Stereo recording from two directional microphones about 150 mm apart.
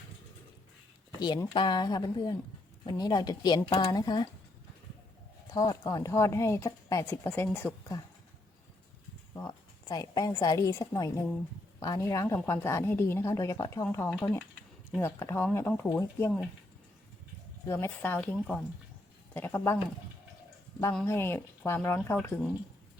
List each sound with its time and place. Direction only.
1.5 s a woman's voice: 30° left (ahead or behind)
5.5 s a woman's voice: 25° left (ahead or behind)
9.3 s a woman's voice: 25° left (ahead or behind)
14.1 s speech: centre (ahead or behind)
15.0 s speech: 15° left (ahead or behind)
17.7 s speech: 15° left (ahead or behind)
21.1 s speech: 15° left (ahead or behind)